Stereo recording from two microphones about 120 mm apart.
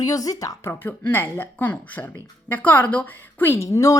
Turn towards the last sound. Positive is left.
turn(degrees=25)  # may be behind; listen again after turning